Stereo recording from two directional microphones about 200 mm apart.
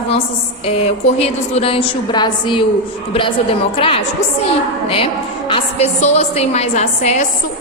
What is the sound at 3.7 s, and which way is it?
A woman's voice, 30° left (ahead or behind).